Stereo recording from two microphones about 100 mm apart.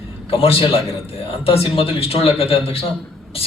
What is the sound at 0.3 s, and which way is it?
A man's voice, 70° left (ahead or behind).